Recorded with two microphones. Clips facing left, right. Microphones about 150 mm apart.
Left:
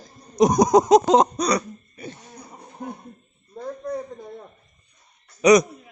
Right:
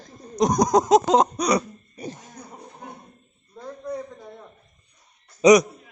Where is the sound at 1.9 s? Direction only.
40° right (ahead or behind).